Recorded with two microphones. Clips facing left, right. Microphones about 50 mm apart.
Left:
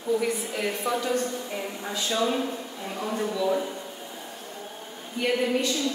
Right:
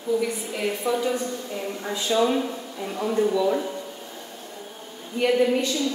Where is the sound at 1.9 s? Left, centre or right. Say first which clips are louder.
Right 4 dB; centre.